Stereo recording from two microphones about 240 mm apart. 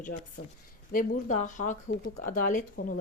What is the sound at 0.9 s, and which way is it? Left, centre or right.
A woman's voice, left.